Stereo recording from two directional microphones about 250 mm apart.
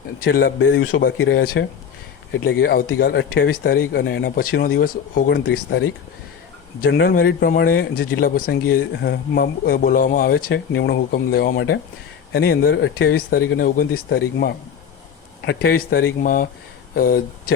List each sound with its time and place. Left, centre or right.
0.3 s speech: left
6.8 s speech: left